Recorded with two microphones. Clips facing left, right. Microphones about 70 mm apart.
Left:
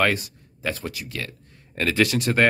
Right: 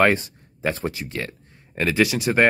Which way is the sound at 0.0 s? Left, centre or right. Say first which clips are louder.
Right 4 dB; right.